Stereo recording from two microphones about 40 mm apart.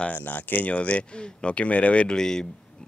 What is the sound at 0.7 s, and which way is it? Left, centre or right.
Speech, left.